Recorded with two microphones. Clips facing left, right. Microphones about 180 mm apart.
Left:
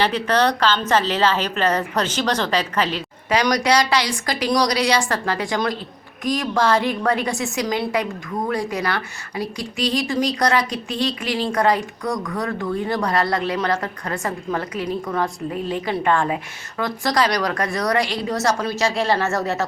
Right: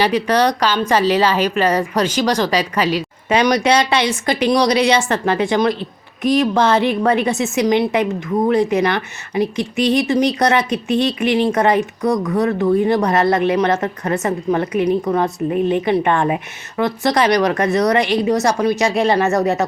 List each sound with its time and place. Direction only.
0.0 s a woman's voice: 15° right (ahead or behind)
3.2 s a woman's voice: 25° right (ahead or behind)